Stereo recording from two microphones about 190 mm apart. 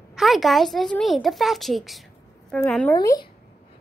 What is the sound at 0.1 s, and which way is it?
A woman's voice, centre (ahead or behind).